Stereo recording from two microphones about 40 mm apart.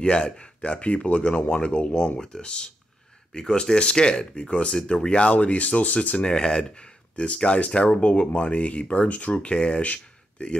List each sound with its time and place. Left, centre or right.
0.0 s speech: left
4.4 s speech: left
4.8 s speech: left
6.2 s speech: left